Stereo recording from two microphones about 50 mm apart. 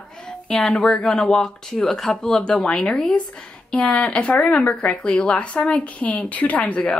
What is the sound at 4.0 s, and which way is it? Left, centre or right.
Speech, left.